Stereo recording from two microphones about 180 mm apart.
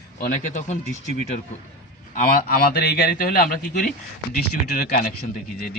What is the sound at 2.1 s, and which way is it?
A man's voice, 50° left (ahead or behind).